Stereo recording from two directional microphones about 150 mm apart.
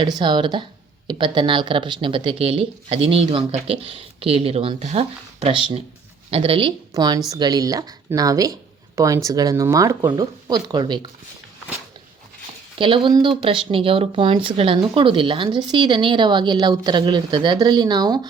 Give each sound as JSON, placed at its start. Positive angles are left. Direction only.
{"t": 0.0, "sound": "speech", "side_deg": -30}
{"t": 6.9, "sound": "speech", "side_deg": -25}
{"t": 12.8, "sound": "speech", "side_deg": -35}